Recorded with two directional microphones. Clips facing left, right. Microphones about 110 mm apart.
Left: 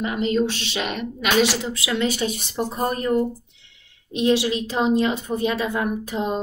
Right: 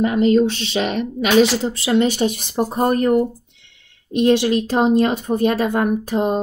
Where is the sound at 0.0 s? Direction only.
40° right (ahead or behind).